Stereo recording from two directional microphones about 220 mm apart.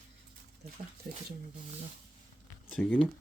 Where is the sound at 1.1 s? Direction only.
40° right (ahead or behind).